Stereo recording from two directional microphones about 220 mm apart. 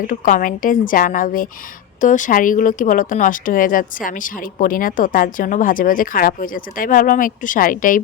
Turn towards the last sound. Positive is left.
turn(degrees=40)  # may be behind; listen again after turning